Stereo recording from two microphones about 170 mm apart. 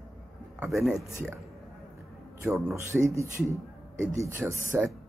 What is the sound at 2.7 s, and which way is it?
Speech, 15° right (ahead or behind).